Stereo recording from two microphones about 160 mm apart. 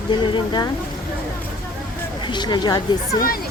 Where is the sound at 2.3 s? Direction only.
30° left (ahead or behind).